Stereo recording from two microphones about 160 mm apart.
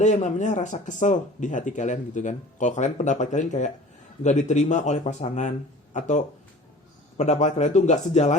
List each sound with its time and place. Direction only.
0.0 s speech: 50° left (ahead or behind)